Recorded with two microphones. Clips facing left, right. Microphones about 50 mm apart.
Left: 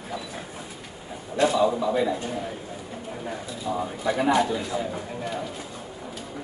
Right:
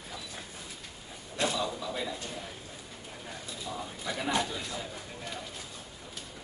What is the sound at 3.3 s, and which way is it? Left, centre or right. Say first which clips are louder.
Speech: left 9 dB; left.